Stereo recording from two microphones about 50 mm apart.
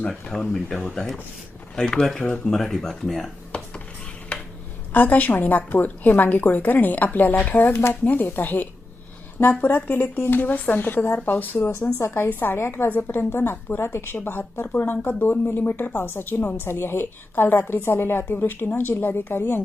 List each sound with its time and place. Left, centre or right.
0.1 s speech: centre
4.3 s a sound: left
4.9 s a woman's voice: left
7.5 s a woman's voice: left
11.9 s a woman's voice: left
14.6 s a woman's voice: left